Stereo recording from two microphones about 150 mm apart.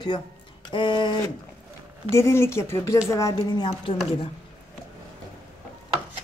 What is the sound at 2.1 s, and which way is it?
Speech, 20° left (ahead or behind).